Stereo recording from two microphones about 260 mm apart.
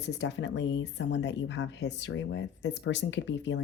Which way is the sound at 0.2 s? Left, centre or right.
Left.